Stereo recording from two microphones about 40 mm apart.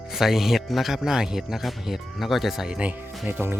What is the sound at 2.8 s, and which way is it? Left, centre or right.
Speech, right.